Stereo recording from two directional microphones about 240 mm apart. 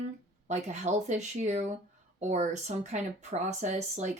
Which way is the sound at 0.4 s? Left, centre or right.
Right.